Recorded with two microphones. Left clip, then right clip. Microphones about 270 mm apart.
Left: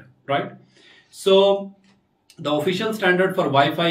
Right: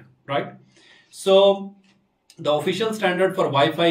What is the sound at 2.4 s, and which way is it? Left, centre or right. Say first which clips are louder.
Speech: right 1 dB; centre.